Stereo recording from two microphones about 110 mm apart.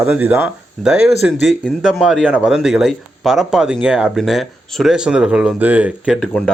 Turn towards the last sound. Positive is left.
turn(degrees=10)  # may be behind; listen again after turning